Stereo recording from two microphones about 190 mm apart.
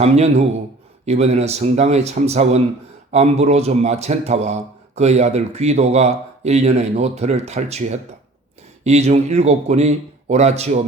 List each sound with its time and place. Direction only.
0.0 s speech: 35° right (ahead or behind)